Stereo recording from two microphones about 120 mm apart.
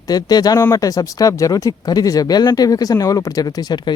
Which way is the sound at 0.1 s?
35° left (ahead or behind).